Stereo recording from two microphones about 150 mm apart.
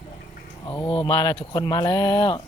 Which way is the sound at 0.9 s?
30° left (ahead or behind).